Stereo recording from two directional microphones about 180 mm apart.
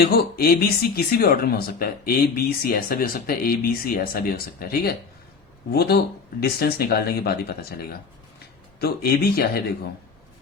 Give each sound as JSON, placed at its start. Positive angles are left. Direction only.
{"t": 0.0, "sound": "speech", "side_deg": 60}
{"t": 8.8, "sound": "speech", "side_deg": 60}